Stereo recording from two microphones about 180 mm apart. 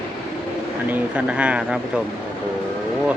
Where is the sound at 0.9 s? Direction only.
5° right (ahead or behind).